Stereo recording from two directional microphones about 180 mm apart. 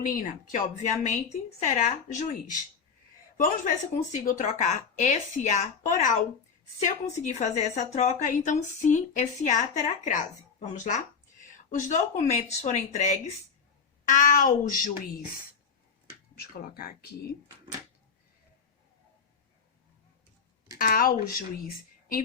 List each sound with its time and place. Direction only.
0.0 s a woman's voice: 45° left (ahead or behind)
3.3 s a woman's voice: 50° left (ahead or behind)
16.4 s speech: 55° left (ahead or behind)
20.7 s speech: 55° left (ahead or behind)